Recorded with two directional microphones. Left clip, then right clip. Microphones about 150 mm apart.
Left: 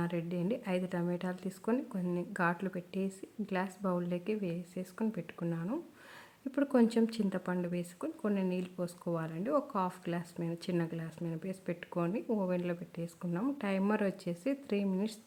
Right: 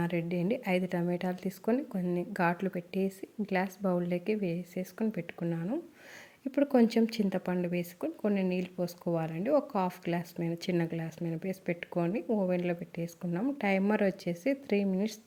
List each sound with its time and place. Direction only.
0.0 s a woman's voice: 20° right (ahead or behind)